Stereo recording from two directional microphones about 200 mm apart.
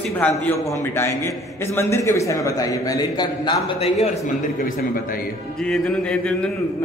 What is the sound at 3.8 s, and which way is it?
Speech, 30° left (ahead or behind).